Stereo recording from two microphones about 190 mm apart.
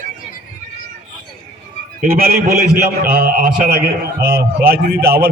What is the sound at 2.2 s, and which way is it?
A man's voice, 50° right (ahead or behind).